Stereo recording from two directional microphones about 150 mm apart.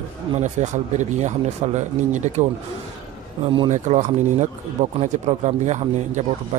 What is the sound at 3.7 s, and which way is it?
Speech, 50° right (ahead or behind).